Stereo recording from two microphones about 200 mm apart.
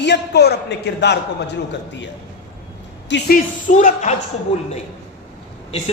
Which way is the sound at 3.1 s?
60° left (ahead or behind).